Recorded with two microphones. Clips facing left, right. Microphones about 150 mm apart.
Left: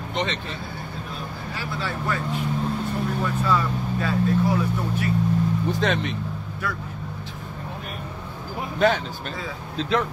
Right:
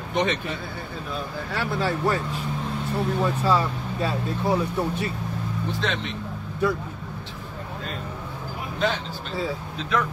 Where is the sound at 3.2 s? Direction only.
30° right (ahead or behind).